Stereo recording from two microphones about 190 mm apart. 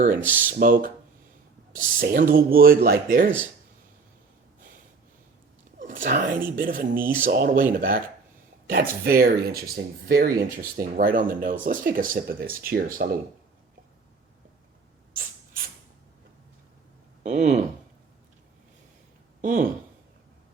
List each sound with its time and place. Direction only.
0.5 s speech: 45° right (ahead or behind)
5.8 s speech: 45° right (ahead or behind)
17.2 s speech: 40° right (ahead or behind)
19.4 s speech: 45° right (ahead or behind)